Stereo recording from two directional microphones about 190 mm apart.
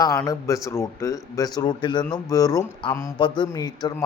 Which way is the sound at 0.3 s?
15° left (ahead or behind).